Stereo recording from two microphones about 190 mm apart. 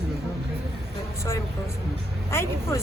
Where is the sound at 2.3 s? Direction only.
15° left (ahead or behind).